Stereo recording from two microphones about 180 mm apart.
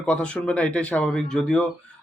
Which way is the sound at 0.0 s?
5° left (ahead or behind).